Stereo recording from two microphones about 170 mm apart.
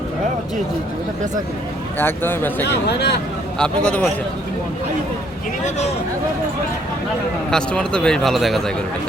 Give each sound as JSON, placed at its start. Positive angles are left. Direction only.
{"t": 2.0, "sound": "a man's voice", "side_deg": 10}
{"t": 2.6, "sound": "speech", "side_deg": 80}
{"t": 3.6, "sound": "a man's voice", "side_deg": 5}
{"t": 7.5, "sound": "a man's voice", "side_deg": 5}